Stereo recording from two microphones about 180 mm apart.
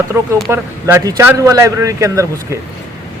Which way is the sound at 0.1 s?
15° right (ahead or behind).